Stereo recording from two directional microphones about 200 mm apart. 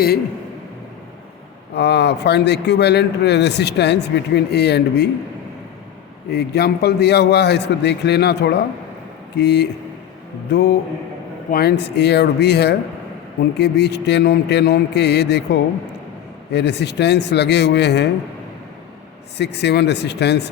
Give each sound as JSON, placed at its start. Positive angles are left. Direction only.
{"t": 1.7, "sound": "a man's voice", "side_deg": 55}
{"t": 6.3, "sound": "a man's voice", "side_deg": 55}
{"t": 19.4, "sound": "a man's voice", "side_deg": 55}